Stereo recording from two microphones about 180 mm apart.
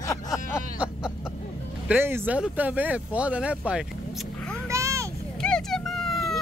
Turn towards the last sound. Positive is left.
turn(degrees=0)  # may be behind; listen again after turning